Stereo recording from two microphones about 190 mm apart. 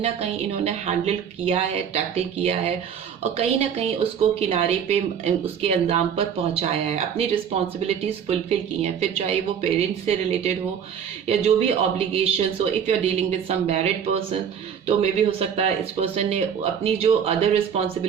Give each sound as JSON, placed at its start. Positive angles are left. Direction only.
{"t": 0.0, "sound": "speech", "side_deg": -35}
{"t": 11.3, "sound": "speech", "side_deg": -30}